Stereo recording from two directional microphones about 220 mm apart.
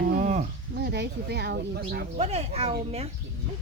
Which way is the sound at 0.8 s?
50° right (ahead or behind).